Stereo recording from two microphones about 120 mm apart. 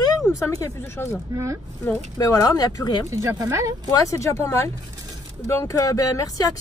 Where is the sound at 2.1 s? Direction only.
30° left (ahead or behind).